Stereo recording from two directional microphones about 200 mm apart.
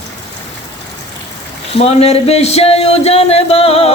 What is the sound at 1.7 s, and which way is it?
Speech, 30° left (ahead or behind).